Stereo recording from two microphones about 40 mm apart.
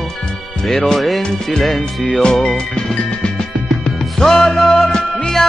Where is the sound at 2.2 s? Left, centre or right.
Centre.